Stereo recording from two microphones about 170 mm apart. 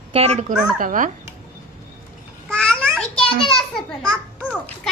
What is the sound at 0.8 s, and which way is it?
Speech, 50° right (ahead or behind).